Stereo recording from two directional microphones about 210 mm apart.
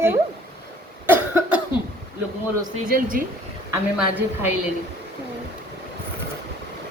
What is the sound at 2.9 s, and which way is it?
Speech, 45° right (ahead or behind).